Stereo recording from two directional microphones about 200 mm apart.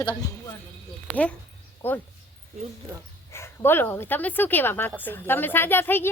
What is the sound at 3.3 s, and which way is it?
Speech, 10° left (ahead or behind).